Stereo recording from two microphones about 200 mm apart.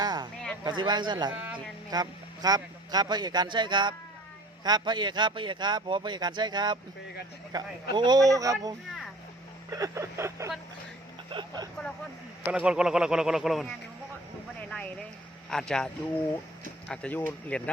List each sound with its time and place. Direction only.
0.0 s a sound: 20° right (ahead or behind)
0.6 s a man's voice: 20° right (ahead or behind)
1.3 s speech: 5° right (ahead or behind)
1.9 s a man's voice: 20° right (ahead or behind)
12.5 s speech: 5° right (ahead or behind)
14.7 s a sound: 5° left (ahead or behind)
15.4 s speech: 5° left (ahead or behind)
16.9 s speech: 5° left (ahead or behind)